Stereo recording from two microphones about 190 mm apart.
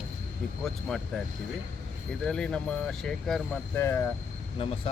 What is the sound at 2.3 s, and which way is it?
Speech, 5° left (ahead or behind).